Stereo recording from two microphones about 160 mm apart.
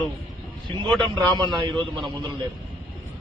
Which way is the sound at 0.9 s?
25° right (ahead or behind).